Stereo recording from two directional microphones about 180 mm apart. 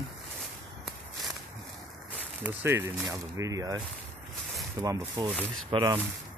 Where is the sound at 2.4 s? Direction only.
15° right (ahead or behind).